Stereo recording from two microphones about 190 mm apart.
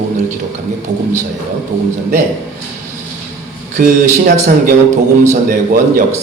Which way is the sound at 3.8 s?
45° right (ahead or behind).